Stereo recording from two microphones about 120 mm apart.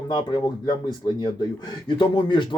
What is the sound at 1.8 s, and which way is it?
Speech, 40° left (ahead or behind).